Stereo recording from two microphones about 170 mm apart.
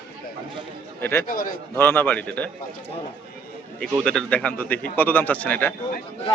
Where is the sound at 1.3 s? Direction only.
55° left (ahead or behind).